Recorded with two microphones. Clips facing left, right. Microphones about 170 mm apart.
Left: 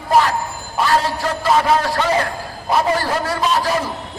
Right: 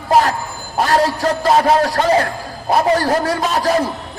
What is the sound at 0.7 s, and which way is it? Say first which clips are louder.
A man's voice: right 3 dB; 40° right (ahead or behind).